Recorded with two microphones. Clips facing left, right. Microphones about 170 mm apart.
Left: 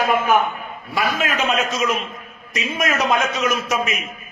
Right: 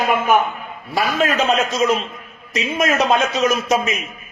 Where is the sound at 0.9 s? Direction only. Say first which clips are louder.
Right 4 dB; 35° right (ahead or behind).